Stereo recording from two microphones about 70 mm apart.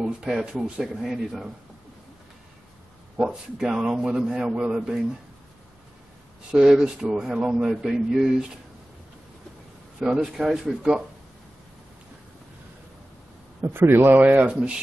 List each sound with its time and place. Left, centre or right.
0.2 s a man's voice: centre
3.2 s a man's voice: centre
6.5 s a man's voice: centre
9.9 s a man's voice: centre
13.6 s a man's voice: right
14.1 s a man's voice: right